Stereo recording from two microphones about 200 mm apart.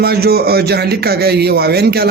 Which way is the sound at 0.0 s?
50° right (ahead or behind).